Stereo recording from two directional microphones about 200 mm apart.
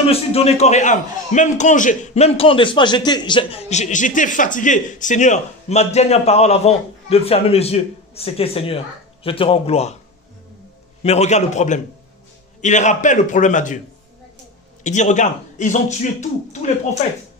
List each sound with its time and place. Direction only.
0.0 s a man's voice: 30° left (ahead or behind)
11.0 s a man's voice: 35° left (ahead or behind)
14.8 s a man's voice: 35° left (ahead or behind)